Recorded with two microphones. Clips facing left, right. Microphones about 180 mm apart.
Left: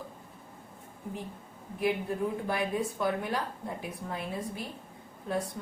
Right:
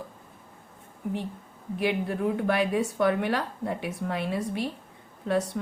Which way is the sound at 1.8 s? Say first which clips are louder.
Right 3 dB; 75° right (ahead or behind).